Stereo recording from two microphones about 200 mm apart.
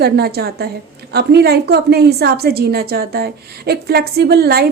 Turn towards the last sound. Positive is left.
turn(degrees=-50)  # may be behind; listen again after turning